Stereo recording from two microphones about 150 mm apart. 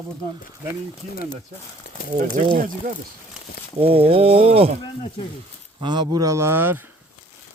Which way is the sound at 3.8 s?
40° right (ahead or behind).